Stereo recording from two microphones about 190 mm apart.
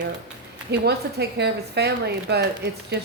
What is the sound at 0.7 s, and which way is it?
A woman's voice, 60° right (ahead or behind).